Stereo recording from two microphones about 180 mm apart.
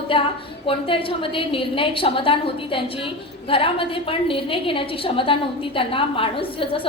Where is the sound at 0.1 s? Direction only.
30° left (ahead or behind).